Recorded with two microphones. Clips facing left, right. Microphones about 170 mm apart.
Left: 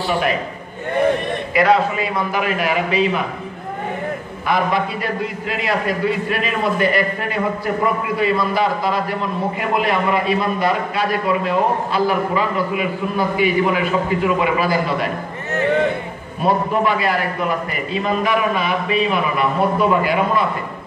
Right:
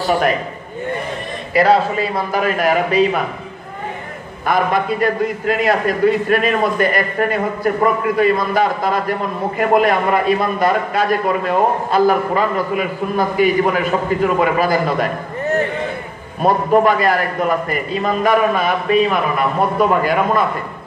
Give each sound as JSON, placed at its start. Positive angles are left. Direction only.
{"t": 0.0, "sound": "a man's voice", "side_deg": -40}
{"t": 1.5, "sound": "a man's voice", "side_deg": -35}
{"t": 4.5, "sound": "a man's voice", "side_deg": -45}
{"t": 16.4, "sound": "a man's voice", "side_deg": -45}